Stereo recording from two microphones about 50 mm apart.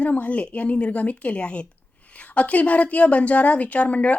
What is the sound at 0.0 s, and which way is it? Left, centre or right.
A woman's voice, left.